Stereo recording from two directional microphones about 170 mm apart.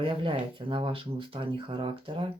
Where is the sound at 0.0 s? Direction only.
30° right (ahead or behind).